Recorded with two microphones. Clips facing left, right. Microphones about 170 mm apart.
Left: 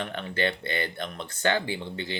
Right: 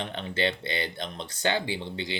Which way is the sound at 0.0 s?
25° right (ahead or behind).